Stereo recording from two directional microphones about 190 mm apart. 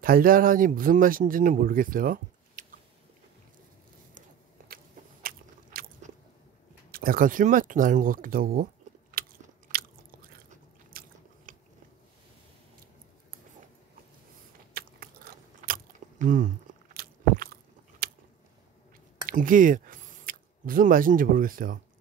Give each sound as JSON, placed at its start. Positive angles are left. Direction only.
{"t": 0.0, "sound": "speech", "side_deg": -50}
{"t": 5.2, "sound": "biting", "side_deg": -50}
{"t": 6.9, "sound": "speech", "side_deg": -50}
{"t": 9.2, "sound": "biting", "side_deg": -50}
{"t": 10.9, "sound": "biting", "side_deg": -50}
{"t": 14.7, "sound": "chewing", "side_deg": -50}
{"t": 16.9, "sound": "crunch", "side_deg": -50}
{"t": 19.2, "sound": "speech", "side_deg": -45}